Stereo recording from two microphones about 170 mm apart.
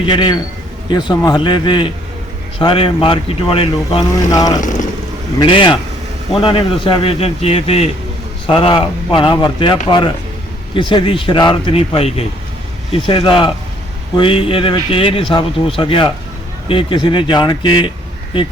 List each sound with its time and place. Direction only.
0.0 s speech: 25° left (ahead or behind)
4.3 s speech: 20° left (ahead or behind)